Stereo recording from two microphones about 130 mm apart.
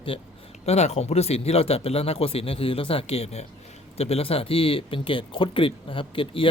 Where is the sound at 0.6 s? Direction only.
55° left (ahead or behind).